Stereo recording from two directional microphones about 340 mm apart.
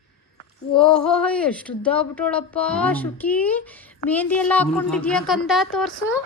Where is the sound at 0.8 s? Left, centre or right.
Centre.